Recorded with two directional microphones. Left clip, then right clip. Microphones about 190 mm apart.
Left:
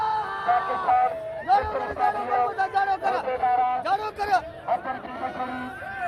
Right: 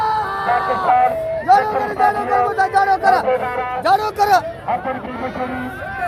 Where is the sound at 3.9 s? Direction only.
40° right (ahead or behind).